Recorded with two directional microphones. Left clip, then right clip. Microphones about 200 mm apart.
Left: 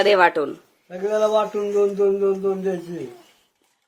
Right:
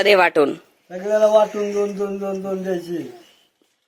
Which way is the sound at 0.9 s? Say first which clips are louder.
Right 4 dB; 55° left (ahead or behind).